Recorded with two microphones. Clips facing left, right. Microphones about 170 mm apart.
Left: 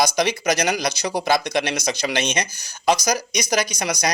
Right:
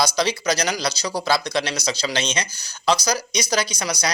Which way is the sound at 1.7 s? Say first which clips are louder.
Left 2 dB; 50° left (ahead or behind).